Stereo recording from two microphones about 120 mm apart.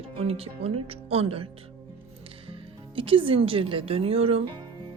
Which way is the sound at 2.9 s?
45° right (ahead or behind).